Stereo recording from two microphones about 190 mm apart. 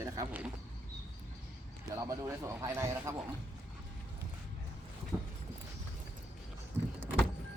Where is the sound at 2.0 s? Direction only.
15° right (ahead or behind).